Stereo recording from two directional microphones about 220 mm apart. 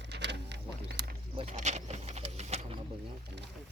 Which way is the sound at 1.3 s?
30° right (ahead or behind).